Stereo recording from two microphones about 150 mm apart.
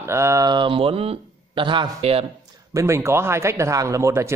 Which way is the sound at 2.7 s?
20° right (ahead or behind).